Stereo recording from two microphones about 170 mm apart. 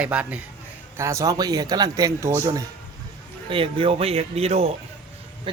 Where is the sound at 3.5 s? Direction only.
30° right (ahead or behind).